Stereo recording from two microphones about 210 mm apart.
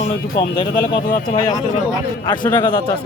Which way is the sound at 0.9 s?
20° left (ahead or behind).